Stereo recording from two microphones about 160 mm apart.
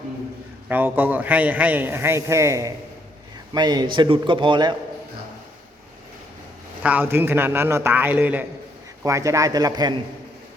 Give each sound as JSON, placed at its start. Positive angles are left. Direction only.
{"t": 0.7, "sound": "a man's voice", "side_deg": -10}
{"t": 6.8, "sound": "a man's voice", "side_deg": -10}